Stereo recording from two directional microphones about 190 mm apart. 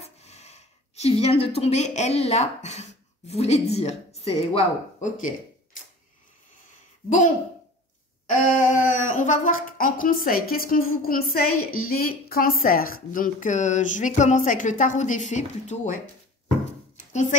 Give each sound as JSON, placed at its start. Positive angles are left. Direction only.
{"t": 0.0, "sound": "speech", "side_deg": 35}
{"t": 7.1, "sound": "speech", "side_deg": 40}
{"t": 16.9, "sound": "a sound", "side_deg": 40}